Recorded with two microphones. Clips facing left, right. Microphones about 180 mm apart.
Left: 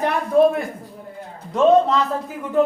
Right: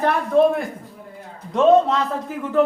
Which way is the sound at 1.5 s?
Centre (ahead or behind).